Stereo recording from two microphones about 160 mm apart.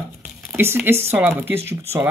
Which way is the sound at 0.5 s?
15° right (ahead or behind).